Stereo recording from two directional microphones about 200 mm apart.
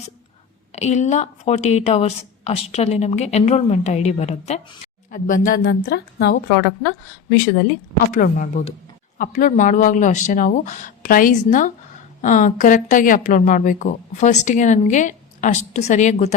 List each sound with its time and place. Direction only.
0.7 s speech: 35° left (ahead or behind)
5.6 s a woman's voice: 55° left (ahead or behind)
8.1 s speech: 40° left (ahead or behind)